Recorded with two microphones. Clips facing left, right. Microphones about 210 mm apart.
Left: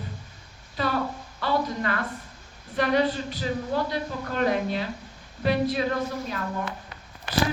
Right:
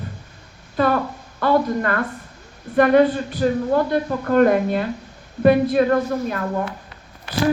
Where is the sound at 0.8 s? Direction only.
50° right (ahead or behind).